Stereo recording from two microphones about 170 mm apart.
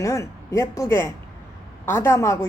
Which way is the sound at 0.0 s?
15° left (ahead or behind).